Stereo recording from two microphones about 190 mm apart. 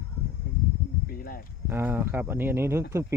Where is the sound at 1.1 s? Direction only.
50° left (ahead or behind).